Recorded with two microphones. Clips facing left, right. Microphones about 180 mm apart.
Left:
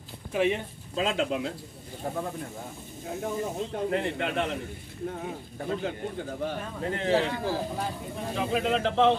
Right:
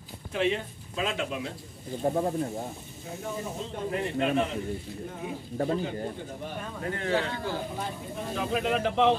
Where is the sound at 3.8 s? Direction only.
75° left (ahead or behind).